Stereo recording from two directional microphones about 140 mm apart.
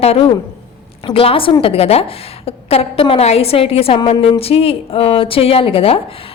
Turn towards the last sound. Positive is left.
turn(degrees=40)  # may be behind; listen again after turning